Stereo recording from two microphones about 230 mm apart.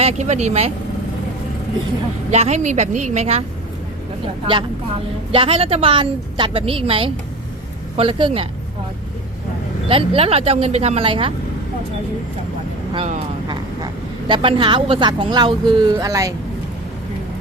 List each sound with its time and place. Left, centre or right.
0.0 s a woman's voice: right
2.3 s a woman's voice: right
5.3 s a woman's voice: right
9.9 s a woman's voice: right
12.9 s speech: right